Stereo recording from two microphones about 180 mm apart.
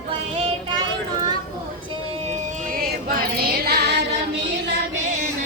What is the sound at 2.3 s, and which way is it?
Music, 55° right (ahead or behind).